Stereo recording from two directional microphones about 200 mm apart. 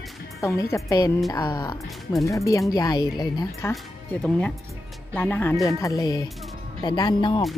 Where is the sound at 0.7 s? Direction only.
15° left (ahead or behind).